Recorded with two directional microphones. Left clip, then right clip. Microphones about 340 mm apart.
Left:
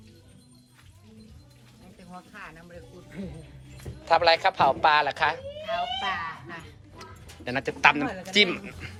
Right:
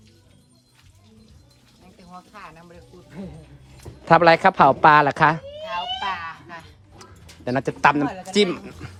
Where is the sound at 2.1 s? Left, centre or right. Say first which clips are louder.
Right 2 dB; right.